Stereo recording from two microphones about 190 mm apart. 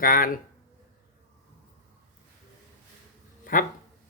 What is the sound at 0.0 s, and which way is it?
Speech, 50° left (ahead or behind).